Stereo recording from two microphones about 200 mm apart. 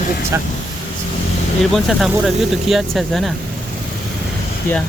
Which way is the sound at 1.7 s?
Centre (ahead or behind).